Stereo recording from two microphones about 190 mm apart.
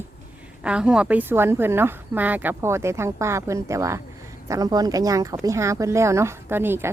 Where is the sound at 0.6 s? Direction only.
5° right (ahead or behind).